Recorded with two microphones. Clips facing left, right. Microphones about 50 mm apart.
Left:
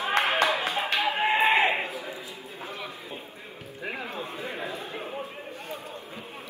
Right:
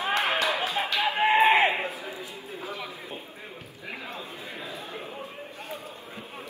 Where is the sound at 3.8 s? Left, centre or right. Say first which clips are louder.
Left 4 dB; left.